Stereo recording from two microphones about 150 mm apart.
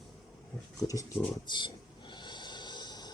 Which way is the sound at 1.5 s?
30° left (ahead or behind).